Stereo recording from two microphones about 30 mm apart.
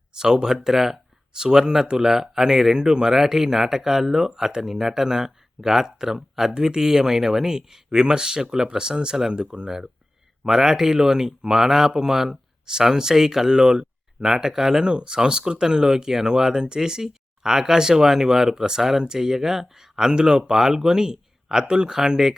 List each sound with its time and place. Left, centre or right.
0.1 s a sound: right
0.4 s speech: centre
1.6 s speech: right
14.8 s speech: right